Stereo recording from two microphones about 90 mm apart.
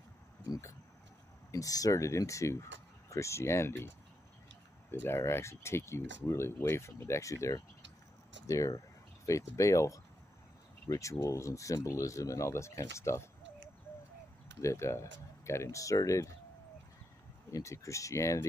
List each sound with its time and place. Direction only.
1.5 s speech: 40° left (ahead or behind)
5.0 s speech: 30° left (ahead or behind)
14.6 s speech: 35° left (ahead or behind)
17.5 s speech: 35° left (ahead or behind)